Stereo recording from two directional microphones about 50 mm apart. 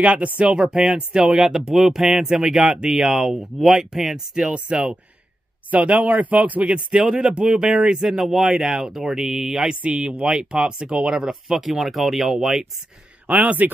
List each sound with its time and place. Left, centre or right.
0.0 s speech: right
6.6 s speech: centre
9.8 s speech: centre
13.3 s a man's voice: right